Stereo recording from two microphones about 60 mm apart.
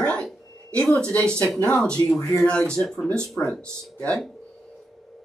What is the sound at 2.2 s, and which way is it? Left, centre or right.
Speech, left.